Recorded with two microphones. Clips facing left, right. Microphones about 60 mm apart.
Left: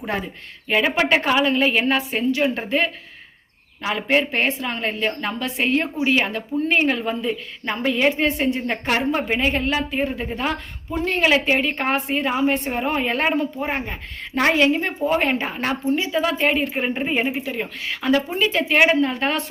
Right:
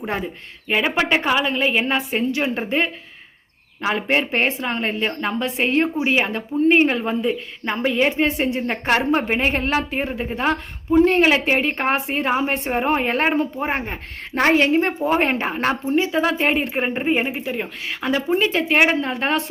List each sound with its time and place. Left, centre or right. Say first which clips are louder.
0.7 s a woman's voice: left 1 dB; centre
2.1 s a woman's voice: left 1 dB; right
7.2 s a woman's voice: right 3 dB; centre
8.4 s a woman's voice: even; right
8.8 s a woman's voice: right 5 dB; right